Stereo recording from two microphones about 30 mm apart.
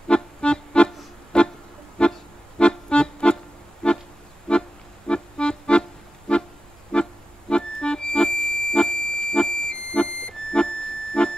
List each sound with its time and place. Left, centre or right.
0.1 s music: left